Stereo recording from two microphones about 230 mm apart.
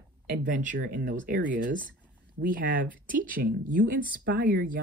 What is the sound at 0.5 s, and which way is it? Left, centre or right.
Speech, right.